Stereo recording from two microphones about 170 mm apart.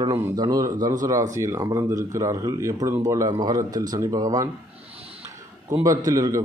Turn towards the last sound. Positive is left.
turn(degrees=-20)  # may be behind; listen again after turning